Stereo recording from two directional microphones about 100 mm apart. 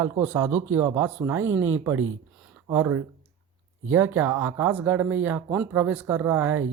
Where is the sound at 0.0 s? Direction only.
20° right (ahead or behind).